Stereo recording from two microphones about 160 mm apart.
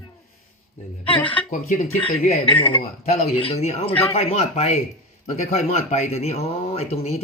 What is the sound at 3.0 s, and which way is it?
Speech, 45° left (ahead or behind).